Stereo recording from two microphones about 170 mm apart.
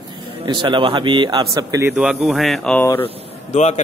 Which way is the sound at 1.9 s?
5° right (ahead or behind).